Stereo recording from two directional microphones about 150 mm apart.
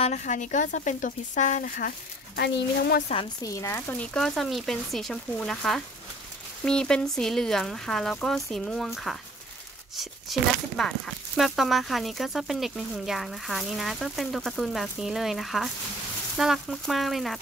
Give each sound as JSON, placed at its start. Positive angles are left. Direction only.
{"t": 0.0, "sound": "speech", "side_deg": 55}
{"t": 3.1, "sound": "a woman's voice", "side_deg": 45}
{"t": 3.4, "sound": "speech", "side_deg": 20}
{"t": 4.0, "sound": "speech", "side_deg": 5}
{"t": 10.3, "sound": "speech", "side_deg": 0}